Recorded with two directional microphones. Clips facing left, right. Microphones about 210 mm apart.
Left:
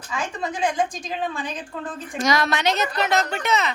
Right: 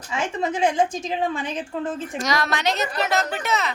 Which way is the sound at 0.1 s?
25° right (ahead or behind).